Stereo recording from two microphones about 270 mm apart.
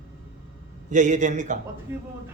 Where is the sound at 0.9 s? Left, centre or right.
Right.